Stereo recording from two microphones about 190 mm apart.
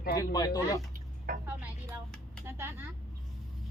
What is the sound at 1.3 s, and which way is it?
Music, 50° right (ahead or behind).